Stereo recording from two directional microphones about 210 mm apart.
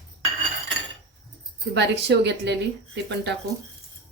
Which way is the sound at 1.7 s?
55° right (ahead or behind).